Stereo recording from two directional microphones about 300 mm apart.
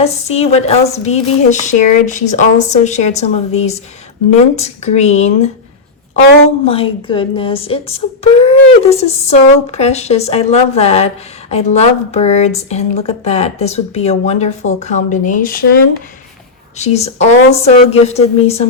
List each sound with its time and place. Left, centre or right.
0.0 s speech: left
6.7 s speech: centre
16.7 s speech: left